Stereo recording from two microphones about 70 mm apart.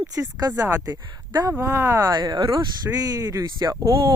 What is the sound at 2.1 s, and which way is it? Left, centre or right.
Speech, right.